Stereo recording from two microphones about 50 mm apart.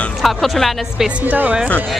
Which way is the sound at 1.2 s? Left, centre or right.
Right.